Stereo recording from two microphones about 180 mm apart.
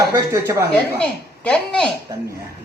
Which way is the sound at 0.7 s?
5° left (ahead or behind).